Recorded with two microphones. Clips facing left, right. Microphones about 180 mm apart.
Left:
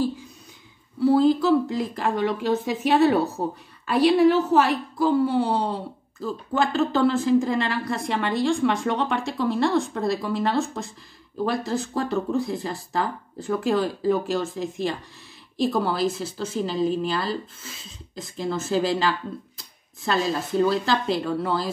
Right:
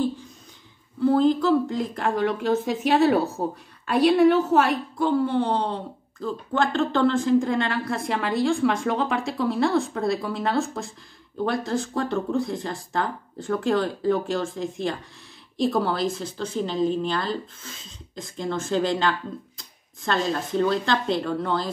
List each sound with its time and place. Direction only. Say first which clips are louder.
0.9 s speech: left 1 dB; 5° left (ahead or behind)